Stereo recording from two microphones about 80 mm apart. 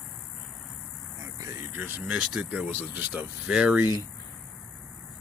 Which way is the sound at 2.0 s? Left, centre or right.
Centre.